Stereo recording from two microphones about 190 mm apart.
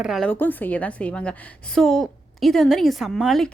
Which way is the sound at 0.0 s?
Centre (ahead or behind).